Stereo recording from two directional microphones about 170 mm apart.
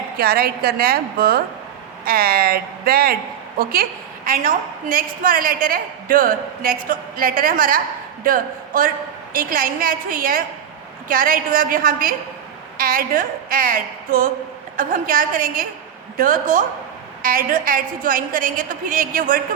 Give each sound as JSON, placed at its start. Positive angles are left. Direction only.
{"t": 0.2, "sound": "a woman's voice", "side_deg": -65}